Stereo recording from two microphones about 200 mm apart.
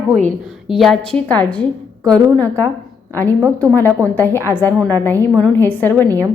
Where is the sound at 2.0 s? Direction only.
20° right (ahead or behind).